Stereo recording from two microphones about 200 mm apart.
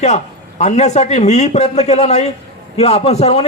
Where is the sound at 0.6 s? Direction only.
35° left (ahead or behind).